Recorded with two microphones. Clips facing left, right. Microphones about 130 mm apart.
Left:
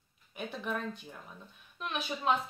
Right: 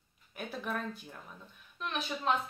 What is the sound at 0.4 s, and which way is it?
Speech, centre (ahead or behind).